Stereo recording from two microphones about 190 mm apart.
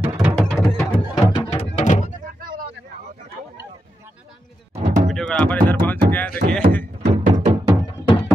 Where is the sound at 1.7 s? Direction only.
40° left (ahead or behind).